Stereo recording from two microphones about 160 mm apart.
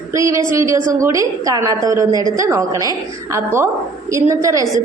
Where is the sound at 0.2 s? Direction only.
20° right (ahead or behind).